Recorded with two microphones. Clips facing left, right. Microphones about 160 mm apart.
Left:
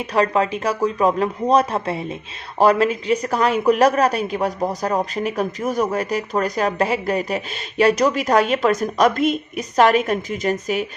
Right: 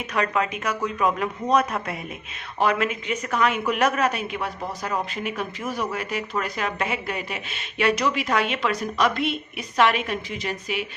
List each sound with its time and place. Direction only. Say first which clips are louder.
0.0 s speech: left 6 dB; 30° left (ahead or behind)